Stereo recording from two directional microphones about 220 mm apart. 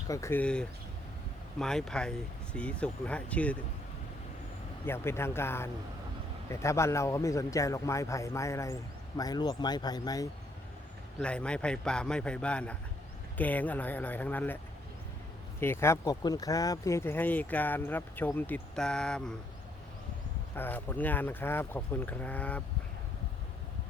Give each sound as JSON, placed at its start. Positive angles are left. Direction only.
{"t": 0.1, "sound": "speech", "side_deg": 10}
{"t": 4.9, "sound": "speech", "side_deg": 10}
{"t": 11.2, "sound": "speech", "side_deg": 5}
{"t": 15.6, "sound": "speech", "side_deg": 10}
{"t": 20.6, "sound": "speech", "side_deg": 10}